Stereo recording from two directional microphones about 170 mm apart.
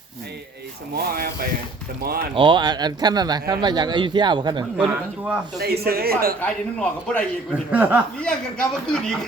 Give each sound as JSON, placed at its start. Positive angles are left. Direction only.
{"t": 0.9, "sound": "a man's voice", "side_deg": -60}
{"t": 2.3, "sound": "speech", "side_deg": -30}
{"t": 5.5, "sound": "a man's voice", "side_deg": -65}
{"t": 6.4, "sound": "a man's voice", "side_deg": 10}
{"t": 7.7, "sound": "speech", "side_deg": -10}
{"t": 8.2, "sound": "a man's voice", "side_deg": 5}